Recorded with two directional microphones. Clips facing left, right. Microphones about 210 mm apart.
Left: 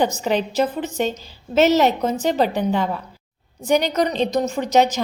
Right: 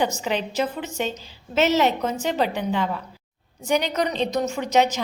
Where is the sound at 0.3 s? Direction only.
40° left (ahead or behind).